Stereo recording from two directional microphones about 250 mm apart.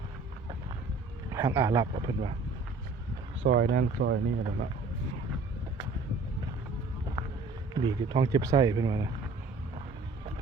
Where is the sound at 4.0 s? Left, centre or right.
Right.